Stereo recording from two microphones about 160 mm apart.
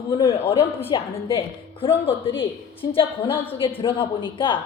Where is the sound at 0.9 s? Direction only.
30° left (ahead or behind).